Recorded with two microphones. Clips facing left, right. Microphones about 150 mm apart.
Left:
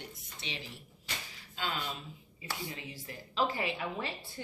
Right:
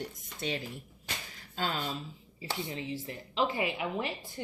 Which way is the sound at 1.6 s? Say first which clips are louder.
Right 4 dB; 45° right (ahead or behind).